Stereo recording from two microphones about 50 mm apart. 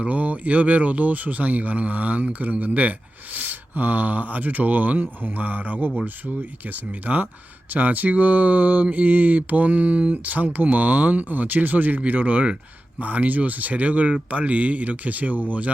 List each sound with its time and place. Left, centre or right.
0.0 s speech: right